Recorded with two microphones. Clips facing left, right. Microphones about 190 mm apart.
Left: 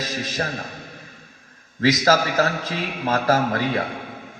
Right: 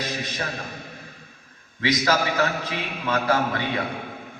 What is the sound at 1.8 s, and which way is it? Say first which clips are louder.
Speech: left 5 dB; 45° left (ahead or behind).